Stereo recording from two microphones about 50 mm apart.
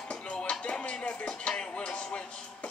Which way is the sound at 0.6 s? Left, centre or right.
Left.